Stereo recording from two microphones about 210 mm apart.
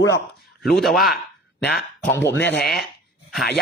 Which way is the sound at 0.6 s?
Centre (ahead or behind).